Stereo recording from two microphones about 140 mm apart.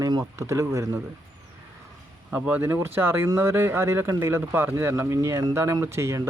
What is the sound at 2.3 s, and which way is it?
Speech, 10° right (ahead or behind).